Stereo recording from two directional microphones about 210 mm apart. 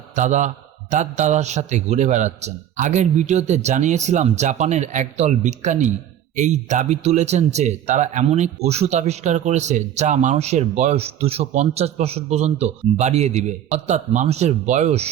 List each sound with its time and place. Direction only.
0.2 s a man's voice: 35° right (ahead or behind)